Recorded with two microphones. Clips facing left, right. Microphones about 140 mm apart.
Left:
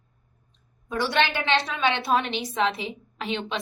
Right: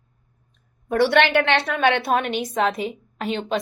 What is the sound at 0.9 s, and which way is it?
A woman's voice, 60° right (ahead or behind).